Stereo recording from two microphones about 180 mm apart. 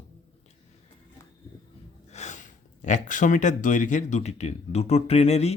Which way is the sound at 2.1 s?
40° left (ahead or behind).